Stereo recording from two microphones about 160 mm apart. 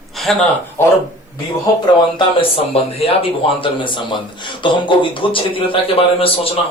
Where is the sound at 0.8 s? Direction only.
15° left (ahead or behind).